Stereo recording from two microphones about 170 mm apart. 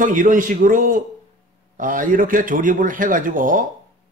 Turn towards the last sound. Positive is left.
turn(degrees=-55)  # may be behind; listen again after turning